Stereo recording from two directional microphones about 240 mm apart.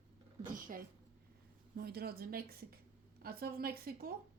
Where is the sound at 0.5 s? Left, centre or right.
Right.